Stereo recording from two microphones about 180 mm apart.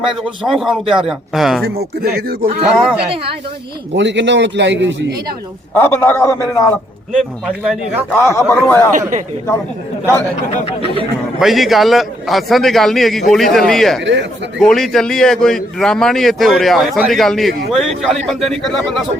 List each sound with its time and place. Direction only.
0.0 s a man's voice: centre (ahead or behind)
1.6 s speech: 60° right (ahead or behind)
3.9 s a man's voice: 80° right
5.7 s a man's voice: 15° left (ahead or behind)
7.1 s a man's voice: centre (ahead or behind)
8.1 s a man's voice: 15° left (ahead or behind)
8.9 s speech: 45° right (ahead or behind)
11.3 s a man's voice: centre (ahead or behind)
14.0 s a man's voice: 85° right
14.6 s a man's voice: centre (ahead or behind)